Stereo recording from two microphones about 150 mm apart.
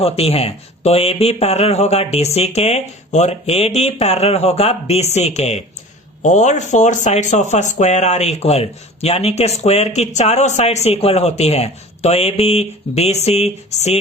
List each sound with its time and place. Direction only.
0.0 s speech: 40° left (ahead or behind)